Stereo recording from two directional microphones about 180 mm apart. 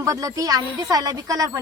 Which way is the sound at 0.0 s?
20° right (ahead or behind).